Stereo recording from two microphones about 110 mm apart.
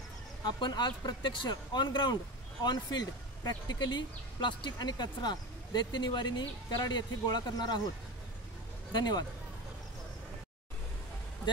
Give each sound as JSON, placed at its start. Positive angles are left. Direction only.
{"t": 0.5, "sound": "speech", "side_deg": 40}
{"t": 8.9, "sound": "speech", "side_deg": 40}